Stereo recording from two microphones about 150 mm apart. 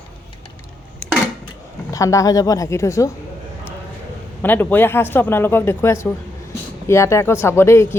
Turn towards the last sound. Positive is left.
turn(degrees=15)  # may be behind; listen again after turning